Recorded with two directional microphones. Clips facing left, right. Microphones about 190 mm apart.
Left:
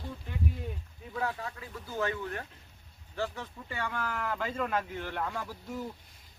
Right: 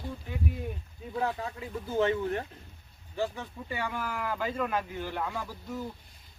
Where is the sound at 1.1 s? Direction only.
25° right (ahead or behind).